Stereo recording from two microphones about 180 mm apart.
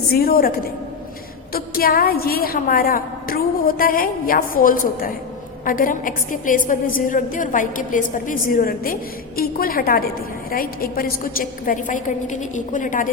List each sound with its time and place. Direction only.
0.1 s a woman's voice: 55° left (ahead or behind)